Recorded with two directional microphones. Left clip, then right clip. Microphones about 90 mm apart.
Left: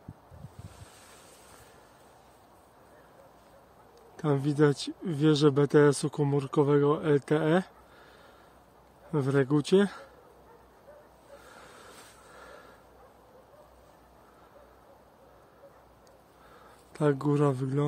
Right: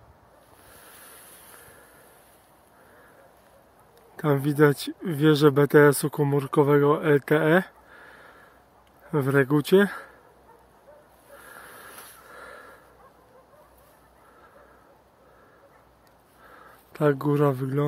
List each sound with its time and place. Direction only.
4.2 s speech: 35° right (ahead or behind)
12.4 s snort: 20° right (ahead or behind)
16.5 s speech: 20° right (ahead or behind)